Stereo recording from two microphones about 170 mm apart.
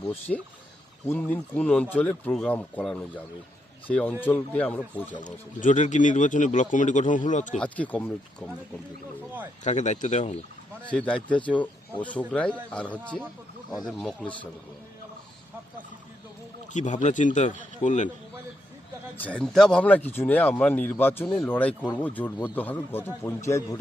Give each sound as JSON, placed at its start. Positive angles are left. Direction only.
{"t": 0.1, "sound": "speech", "side_deg": 10}
{"t": 5.1, "sound": "speech", "side_deg": 50}
{"t": 7.6, "sound": "speech", "side_deg": 5}
{"t": 9.6, "sound": "speech", "side_deg": 45}
{"t": 10.8, "sound": "speech", "side_deg": 5}
{"t": 16.7, "sound": "speech", "side_deg": 45}
{"t": 19.1, "sound": "speech", "side_deg": 10}